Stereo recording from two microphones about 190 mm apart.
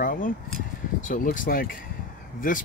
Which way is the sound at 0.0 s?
45° left (ahead or behind).